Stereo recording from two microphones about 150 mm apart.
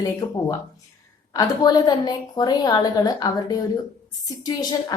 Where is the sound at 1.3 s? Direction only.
25° left (ahead or behind).